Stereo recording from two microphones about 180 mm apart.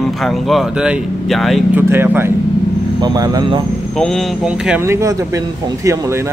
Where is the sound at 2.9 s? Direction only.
20° right (ahead or behind).